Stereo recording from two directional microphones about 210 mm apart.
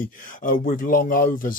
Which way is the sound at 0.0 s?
40° left (ahead or behind).